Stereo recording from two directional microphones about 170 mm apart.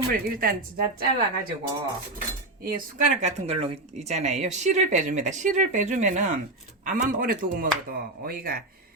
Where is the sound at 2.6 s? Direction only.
50° right (ahead or behind).